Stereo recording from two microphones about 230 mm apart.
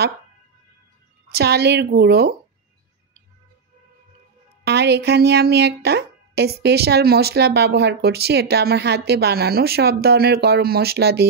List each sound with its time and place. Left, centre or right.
1.3 s speech: right
4.6 s speech: right